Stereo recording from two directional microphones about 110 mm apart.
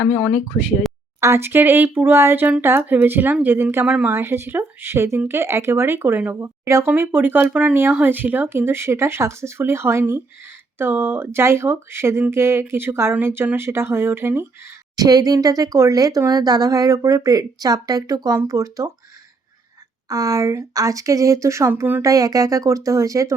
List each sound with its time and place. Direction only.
0.0 s speech: 10° left (ahead or behind)
1.2 s speech: 25° right (ahead or behind)
14.9 s speech: 35° right (ahead or behind)
20.1 s speech: 35° right (ahead or behind)
22.0 s speech: 30° right (ahead or behind)